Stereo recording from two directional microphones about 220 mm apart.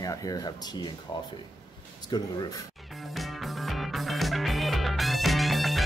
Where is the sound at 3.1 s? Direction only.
Centre (ahead or behind).